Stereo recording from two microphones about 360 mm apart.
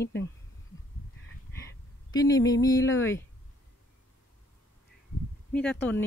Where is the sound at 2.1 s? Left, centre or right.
Centre.